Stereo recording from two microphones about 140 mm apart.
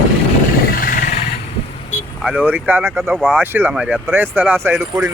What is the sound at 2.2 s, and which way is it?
Speech, 10° right (ahead or behind).